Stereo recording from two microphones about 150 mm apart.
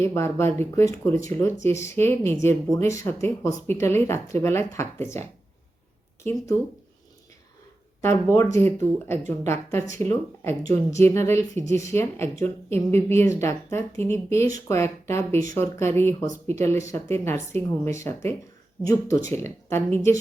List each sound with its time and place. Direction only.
0.0 s speech: 15° left (ahead or behind)
6.2 s speech: 20° left (ahead or behind)
8.0 s speech: 20° left (ahead or behind)